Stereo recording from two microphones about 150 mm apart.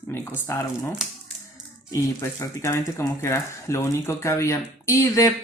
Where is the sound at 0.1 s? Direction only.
15° left (ahead or behind).